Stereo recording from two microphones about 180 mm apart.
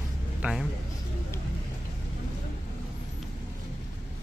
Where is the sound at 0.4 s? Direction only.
5° right (ahead or behind).